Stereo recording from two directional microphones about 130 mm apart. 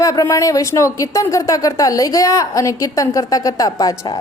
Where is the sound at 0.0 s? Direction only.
25° left (ahead or behind).